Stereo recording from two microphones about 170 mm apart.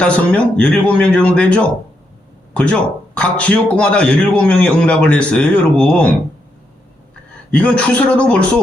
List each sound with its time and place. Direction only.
0.0 s a man's voice: 5° left (ahead or behind)
7.5 s a man's voice: 5° left (ahead or behind)